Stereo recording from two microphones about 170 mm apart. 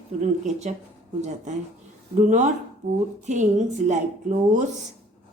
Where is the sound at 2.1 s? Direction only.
45° right (ahead or behind).